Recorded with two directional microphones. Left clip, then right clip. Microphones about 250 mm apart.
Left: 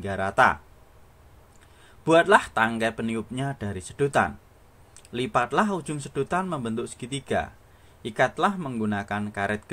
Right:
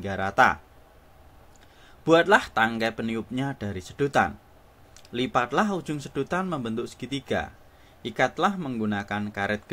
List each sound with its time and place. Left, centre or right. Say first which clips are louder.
0.0 s speech: even; centre
2.0 s speech: left 1 dB; centre